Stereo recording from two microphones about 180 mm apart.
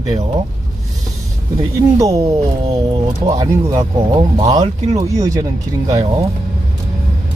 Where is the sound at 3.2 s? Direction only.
20° right (ahead or behind).